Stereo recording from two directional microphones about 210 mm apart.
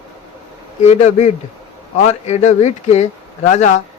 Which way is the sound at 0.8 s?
35° left (ahead or behind).